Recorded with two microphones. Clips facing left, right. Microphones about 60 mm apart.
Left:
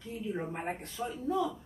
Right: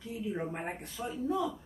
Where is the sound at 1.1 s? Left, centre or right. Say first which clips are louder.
Even; centre.